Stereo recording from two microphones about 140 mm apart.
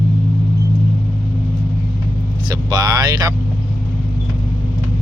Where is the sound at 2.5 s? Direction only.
30° right (ahead or behind).